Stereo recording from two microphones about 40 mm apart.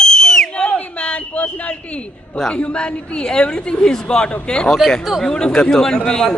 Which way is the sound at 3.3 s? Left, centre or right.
Centre.